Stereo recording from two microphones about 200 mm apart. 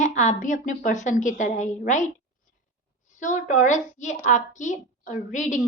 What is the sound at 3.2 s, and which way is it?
Speech, 40° left (ahead or behind).